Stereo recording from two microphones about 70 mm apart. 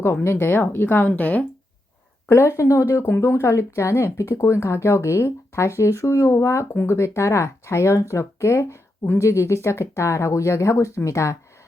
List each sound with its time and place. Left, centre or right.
0.0 s speech: left
2.3 s speech: left